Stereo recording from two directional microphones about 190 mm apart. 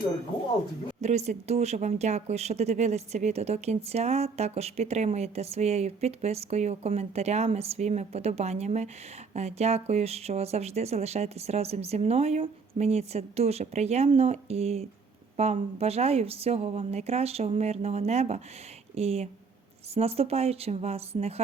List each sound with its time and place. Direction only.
1.0 s speech: 35° right (ahead or behind)